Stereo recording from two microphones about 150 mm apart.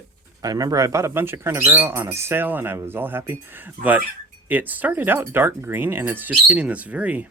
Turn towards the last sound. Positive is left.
turn(degrees=-10)  # may be behind; listen again after turning